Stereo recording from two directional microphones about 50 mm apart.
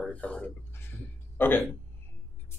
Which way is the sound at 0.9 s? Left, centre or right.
Left.